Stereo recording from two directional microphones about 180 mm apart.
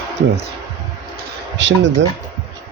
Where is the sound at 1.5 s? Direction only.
85° right.